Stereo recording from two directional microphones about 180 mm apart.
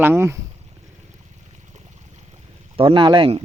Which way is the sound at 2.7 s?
30° right (ahead or behind).